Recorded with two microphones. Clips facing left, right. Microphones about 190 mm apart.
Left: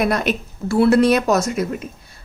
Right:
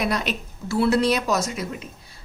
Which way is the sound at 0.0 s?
50° left (ahead or behind).